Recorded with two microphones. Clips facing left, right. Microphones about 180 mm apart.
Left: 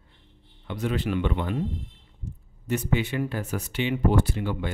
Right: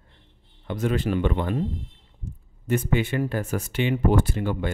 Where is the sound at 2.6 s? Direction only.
50° right (ahead or behind).